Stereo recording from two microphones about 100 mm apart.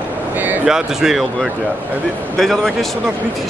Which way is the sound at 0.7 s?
5° right (ahead or behind).